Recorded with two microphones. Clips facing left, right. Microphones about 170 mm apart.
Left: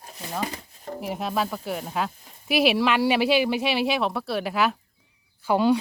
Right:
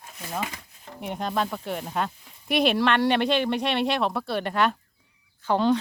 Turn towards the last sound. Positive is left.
turn(degrees=10)  # may be behind; listen again after turning